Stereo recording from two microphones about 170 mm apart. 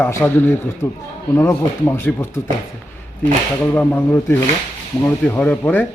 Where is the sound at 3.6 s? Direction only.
10° left (ahead or behind).